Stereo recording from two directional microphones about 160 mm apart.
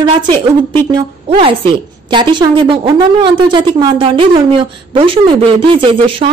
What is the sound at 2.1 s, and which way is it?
A woman's voice, 30° right (ahead or behind).